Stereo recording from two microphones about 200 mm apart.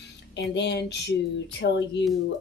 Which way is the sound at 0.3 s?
60° left (ahead or behind).